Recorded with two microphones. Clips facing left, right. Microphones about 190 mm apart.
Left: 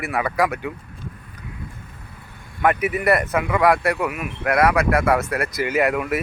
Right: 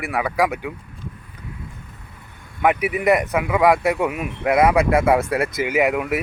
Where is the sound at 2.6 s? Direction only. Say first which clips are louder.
Right 1 dB; 15° right (ahead or behind).